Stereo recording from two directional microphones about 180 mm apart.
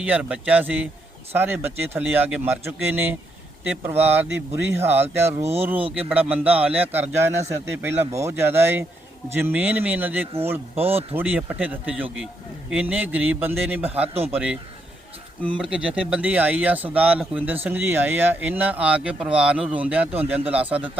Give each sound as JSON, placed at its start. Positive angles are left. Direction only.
{"t": 0.0, "sound": "speech", "side_deg": -10}
{"t": 14.1, "sound": "a man's voice", "side_deg": -35}
{"t": 14.3, "sound": "speech", "side_deg": -5}